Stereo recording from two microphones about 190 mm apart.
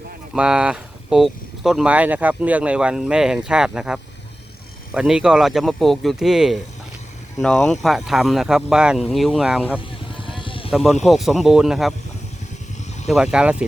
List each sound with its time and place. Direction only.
0.3 s speech: 5° right (ahead or behind)
10.2 s vehicle: 25° left (ahead or behind)
10.7 s speech: centre (ahead or behind)
13.1 s speech: 5° right (ahead or behind)